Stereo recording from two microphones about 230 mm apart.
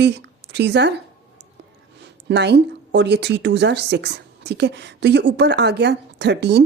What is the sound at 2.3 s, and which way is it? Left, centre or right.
A woman's voice, right.